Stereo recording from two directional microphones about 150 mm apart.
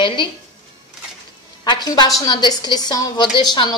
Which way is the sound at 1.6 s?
30° left (ahead or behind).